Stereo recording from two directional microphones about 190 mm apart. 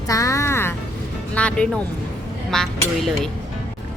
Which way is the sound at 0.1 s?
15° left (ahead or behind).